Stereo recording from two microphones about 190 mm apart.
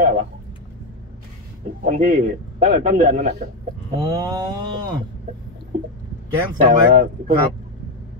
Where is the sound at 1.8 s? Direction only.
40° right (ahead or behind).